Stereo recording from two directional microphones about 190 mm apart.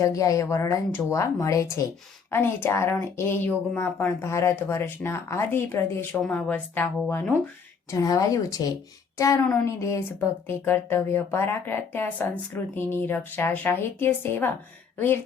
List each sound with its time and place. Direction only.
0.0 s speech: 15° left (ahead or behind)